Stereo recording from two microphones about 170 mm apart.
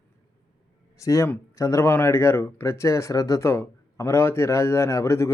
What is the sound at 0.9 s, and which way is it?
Speech, 20° left (ahead or behind).